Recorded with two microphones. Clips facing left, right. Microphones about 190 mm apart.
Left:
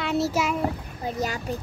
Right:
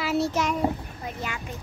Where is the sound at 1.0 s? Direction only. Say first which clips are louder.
Left 6 dB; 35° left (ahead or behind).